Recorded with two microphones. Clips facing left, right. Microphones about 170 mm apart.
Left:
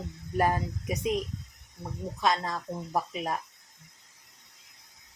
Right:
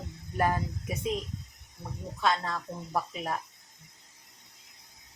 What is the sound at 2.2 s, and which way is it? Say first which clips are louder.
Speech: left 1 dB; 15° left (ahead or behind).